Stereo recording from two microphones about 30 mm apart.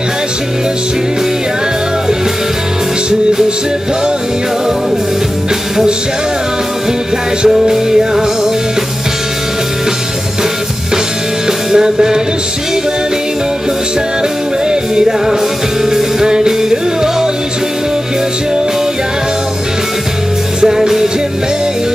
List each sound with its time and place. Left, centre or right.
7.4 s music: centre
11.7 s music: centre
14.7 s music: right
20.6 s music: centre